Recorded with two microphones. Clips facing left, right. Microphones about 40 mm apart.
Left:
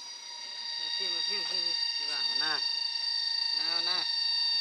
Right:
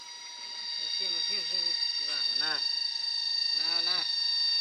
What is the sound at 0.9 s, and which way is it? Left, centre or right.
Speech, centre.